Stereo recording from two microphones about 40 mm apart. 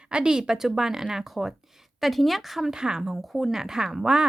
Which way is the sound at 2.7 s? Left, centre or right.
Centre.